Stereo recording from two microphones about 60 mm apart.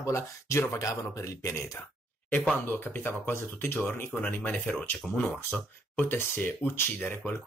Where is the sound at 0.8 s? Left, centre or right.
Left.